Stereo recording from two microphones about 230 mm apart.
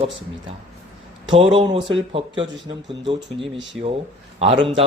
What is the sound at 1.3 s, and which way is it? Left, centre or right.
Speech, right.